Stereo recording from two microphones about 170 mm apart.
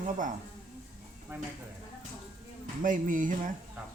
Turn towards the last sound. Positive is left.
turn(degrees=-50)  # may be behind; listen again after turning